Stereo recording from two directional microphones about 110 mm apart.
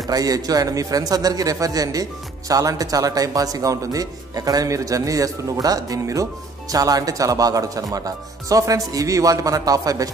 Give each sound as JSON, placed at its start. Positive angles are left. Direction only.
{"t": 0.0, "sound": "a man's voice", "side_deg": -35}